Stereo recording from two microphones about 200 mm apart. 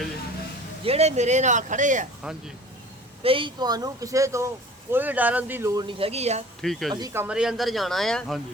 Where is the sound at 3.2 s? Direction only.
25° right (ahead or behind).